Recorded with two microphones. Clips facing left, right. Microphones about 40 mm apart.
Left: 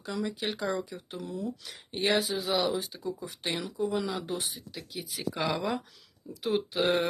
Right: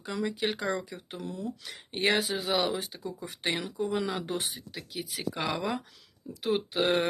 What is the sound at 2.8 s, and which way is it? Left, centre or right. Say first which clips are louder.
Speech: left 2 dB; right.